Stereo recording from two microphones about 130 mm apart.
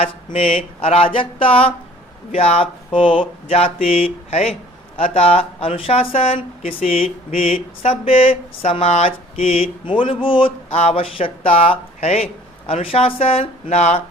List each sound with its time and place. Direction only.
0.3 s speech: 45° left (ahead or behind)
7.3 s a sound: 80° left
7.5 s speech: 50° left (ahead or behind)